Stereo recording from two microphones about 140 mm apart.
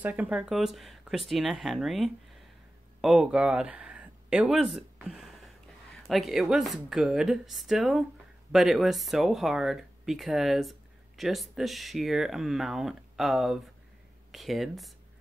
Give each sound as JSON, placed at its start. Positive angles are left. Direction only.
{"t": 0.0, "sound": "speech", "side_deg": -10}